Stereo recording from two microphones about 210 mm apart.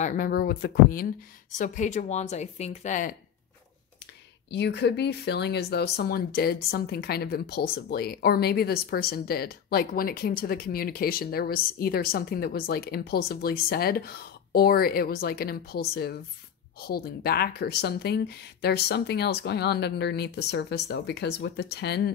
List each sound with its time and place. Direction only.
0.0 s speech: 40° left (ahead or behind)
4.5 s speech: 55° left (ahead or behind)